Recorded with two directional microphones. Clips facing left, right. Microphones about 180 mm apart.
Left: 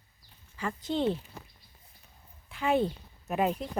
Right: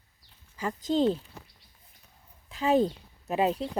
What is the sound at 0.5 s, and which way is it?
Speech, 40° right (ahead or behind).